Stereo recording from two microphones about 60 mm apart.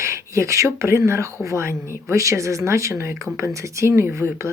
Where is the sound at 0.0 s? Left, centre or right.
Right.